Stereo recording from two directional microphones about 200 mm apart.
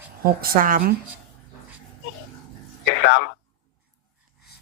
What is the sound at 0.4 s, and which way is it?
Speech, 45° right (ahead or behind).